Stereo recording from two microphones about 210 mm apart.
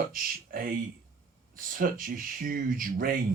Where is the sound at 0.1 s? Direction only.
40° right (ahead or behind).